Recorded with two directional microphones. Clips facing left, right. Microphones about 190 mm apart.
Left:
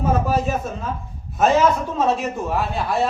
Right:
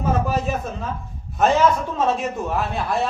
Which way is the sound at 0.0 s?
Centre (ahead or behind).